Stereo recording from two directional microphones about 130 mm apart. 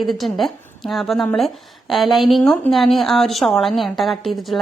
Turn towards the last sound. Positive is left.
turn(degrees=0)  # may be behind; listen again after turning